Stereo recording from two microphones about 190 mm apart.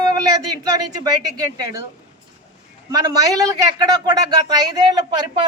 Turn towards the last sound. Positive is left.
turn(degrees=-20)  # may be behind; listen again after turning